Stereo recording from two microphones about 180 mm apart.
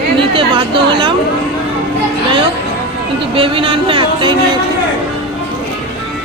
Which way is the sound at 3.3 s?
30° right (ahead or behind).